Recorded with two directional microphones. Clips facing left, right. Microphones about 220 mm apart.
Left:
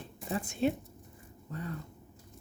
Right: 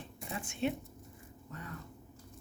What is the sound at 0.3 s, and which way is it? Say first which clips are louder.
Speech: left 5 dB; 40° left (ahead or behind).